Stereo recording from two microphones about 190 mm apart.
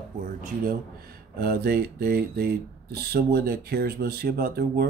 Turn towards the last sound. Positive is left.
turn(degrees=-55)  # may be behind; listen again after turning